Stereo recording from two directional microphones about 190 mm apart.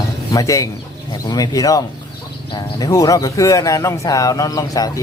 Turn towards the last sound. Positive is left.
turn(degrees=20)  # may be behind; listen again after turning